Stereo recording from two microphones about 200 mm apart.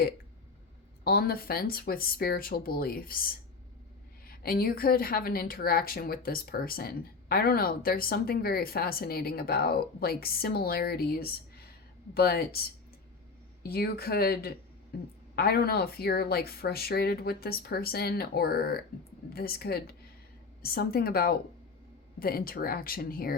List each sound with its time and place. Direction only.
1.0 s a woman's voice: 50° left (ahead or behind)
13.6 s a woman's voice: 50° left (ahead or behind)